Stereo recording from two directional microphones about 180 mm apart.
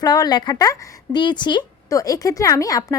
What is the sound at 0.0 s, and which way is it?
Speech, 20° left (ahead or behind).